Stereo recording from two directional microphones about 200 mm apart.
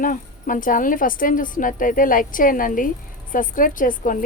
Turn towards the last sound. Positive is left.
turn(degrees=40)  # may be behind; listen again after turning